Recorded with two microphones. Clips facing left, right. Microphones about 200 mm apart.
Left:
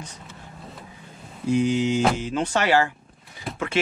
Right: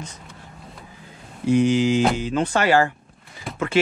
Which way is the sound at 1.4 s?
70° right (ahead or behind).